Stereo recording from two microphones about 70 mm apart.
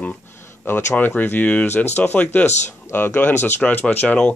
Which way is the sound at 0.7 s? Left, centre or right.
Left.